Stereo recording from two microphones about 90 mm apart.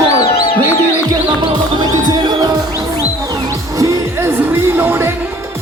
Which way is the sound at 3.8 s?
35° right (ahead or behind).